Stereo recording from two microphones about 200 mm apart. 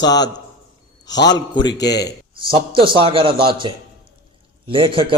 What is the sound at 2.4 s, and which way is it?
A man's voice, 25° right (ahead or behind).